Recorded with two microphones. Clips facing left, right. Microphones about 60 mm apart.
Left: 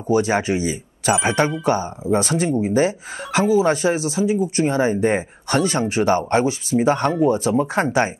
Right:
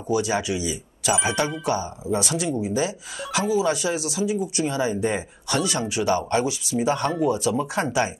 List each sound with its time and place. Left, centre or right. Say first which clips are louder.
0.1 s speech: left 5 dB; left